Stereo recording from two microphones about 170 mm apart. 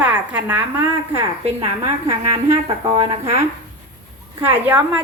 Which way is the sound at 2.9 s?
30° right (ahead or behind).